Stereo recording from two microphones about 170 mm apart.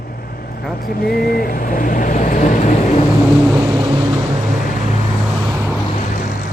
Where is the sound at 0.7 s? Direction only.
60° left (ahead or behind); by 3.0 s 45° left (ahead or behind).